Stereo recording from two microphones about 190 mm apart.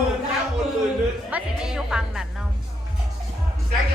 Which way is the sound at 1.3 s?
5° right (ahead or behind).